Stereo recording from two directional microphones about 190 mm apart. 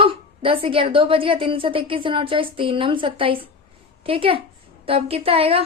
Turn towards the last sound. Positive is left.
turn(degrees=-30)  # may be behind; listen again after turning